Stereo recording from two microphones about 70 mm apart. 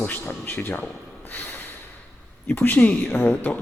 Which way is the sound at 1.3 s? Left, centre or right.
Left.